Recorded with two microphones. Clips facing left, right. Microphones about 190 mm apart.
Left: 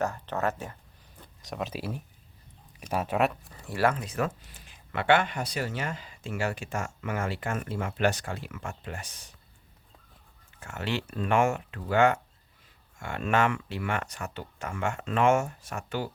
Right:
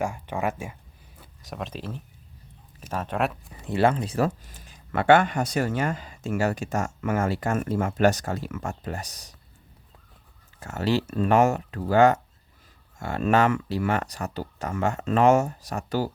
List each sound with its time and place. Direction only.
0.0 s speech: 10° right (ahead or behind)
1.2 s speech: centre (ahead or behind)
3.5 s speech: 25° right (ahead or behind)
4.4 s speech: 40° right (ahead or behind)
10.6 s speech: 35° right (ahead or behind)